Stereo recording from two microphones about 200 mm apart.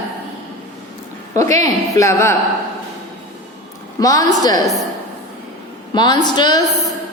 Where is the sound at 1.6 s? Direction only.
15° left (ahead or behind).